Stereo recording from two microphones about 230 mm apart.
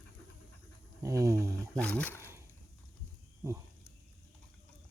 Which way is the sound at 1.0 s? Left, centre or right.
Centre.